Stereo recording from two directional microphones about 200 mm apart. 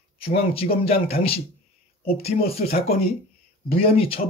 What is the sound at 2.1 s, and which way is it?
Speech, 30° left (ahead or behind).